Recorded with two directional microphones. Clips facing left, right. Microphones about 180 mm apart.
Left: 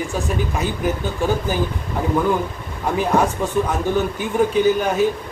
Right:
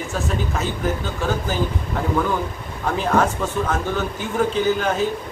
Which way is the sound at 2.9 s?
15° left (ahead or behind).